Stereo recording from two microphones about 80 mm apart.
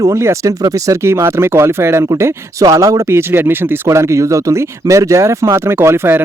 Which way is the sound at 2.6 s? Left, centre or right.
Right.